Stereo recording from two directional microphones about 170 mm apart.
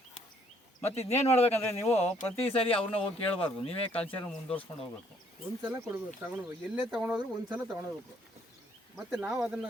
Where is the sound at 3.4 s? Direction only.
35° left (ahead or behind).